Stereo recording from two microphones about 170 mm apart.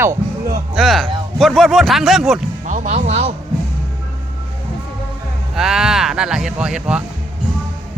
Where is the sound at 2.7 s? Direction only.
45° right (ahead or behind).